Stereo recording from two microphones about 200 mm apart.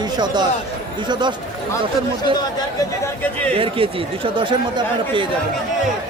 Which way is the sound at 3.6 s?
25° right (ahead or behind).